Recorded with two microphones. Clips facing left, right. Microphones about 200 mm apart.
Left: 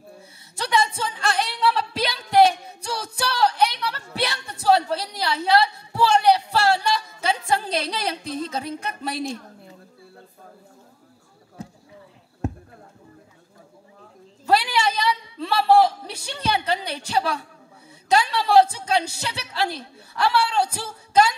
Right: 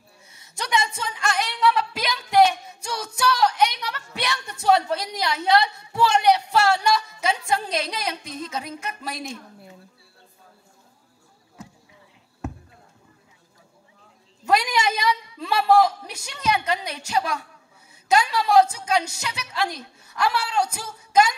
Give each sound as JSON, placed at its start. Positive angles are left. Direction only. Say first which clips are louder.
{"t": 0.6, "sound": "music", "louder": "left 3 dB", "side_deg": 30}
{"t": 8.8, "sound": "a woman's voice", "louder": "left 4 dB", "side_deg": 30}
{"t": 11.5, "sound": "basketball bounce", "louder": "left 5 dB", "side_deg": 35}
{"t": 14.5, "sound": "a man's voice", "louder": "left 1 dB", "side_deg": 30}